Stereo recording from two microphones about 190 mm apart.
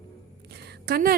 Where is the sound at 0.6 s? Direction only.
55° right (ahead or behind).